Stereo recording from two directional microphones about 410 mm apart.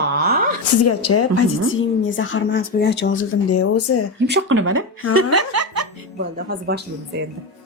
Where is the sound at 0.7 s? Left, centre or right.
Left.